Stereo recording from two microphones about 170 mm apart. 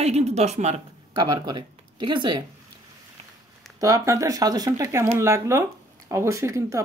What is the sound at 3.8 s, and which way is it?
Speech, 20° right (ahead or behind).